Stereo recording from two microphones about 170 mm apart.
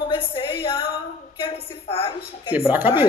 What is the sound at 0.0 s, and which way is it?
Music, 30° left (ahead or behind).